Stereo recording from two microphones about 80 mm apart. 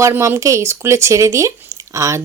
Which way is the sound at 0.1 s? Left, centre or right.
Right.